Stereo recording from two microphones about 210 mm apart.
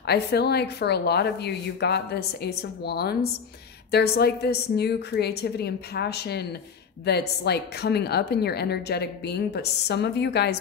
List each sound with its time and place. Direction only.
0.0 s a woman's voice: 50° left (ahead or behind)